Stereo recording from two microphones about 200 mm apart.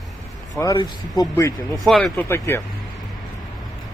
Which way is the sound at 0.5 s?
15° left (ahead or behind).